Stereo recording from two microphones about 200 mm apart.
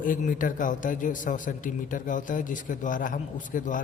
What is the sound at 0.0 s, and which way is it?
A man's voice, 40° left (ahead or behind).